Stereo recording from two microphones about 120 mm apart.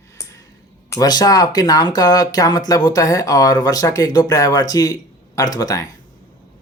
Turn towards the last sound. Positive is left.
turn(degrees=30)  # may be behind; listen again after turning